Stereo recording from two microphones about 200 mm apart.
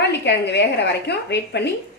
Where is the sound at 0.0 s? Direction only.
60° left (ahead or behind).